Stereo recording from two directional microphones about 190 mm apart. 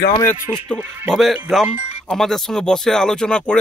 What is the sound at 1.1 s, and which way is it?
A man's voice, centre (ahead or behind).